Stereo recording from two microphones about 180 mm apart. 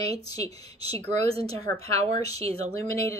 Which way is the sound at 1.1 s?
35° right (ahead or behind).